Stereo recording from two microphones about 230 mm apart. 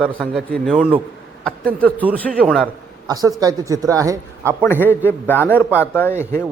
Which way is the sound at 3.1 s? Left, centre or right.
Centre.